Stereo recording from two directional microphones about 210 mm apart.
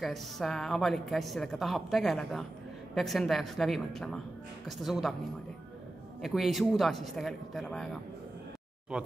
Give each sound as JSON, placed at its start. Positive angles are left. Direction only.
{"t": 0.0, "sound": "a woman's voice", "side_deg": 0}
{"t": 6.2, "sound": "a woman's voice", "side_deg": 0}